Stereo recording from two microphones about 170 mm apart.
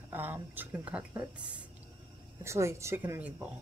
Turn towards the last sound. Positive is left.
turn(degrees=-10)  # may be behind; listen again after turning